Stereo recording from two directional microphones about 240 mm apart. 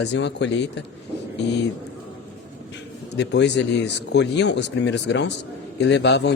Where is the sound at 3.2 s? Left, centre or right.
Left.